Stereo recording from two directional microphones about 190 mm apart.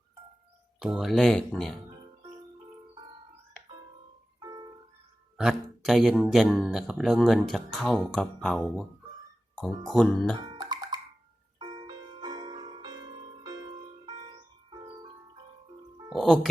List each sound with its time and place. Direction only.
0.8 s speech: centre (ahead or behind)
5.4 s speech: 5° right (ahead or behind)
9.9 s speech: 5° left (ahead or behind)
10.4 s music: 25° right (ahead or behind)
16.0 s speech: centre (ahead or behind)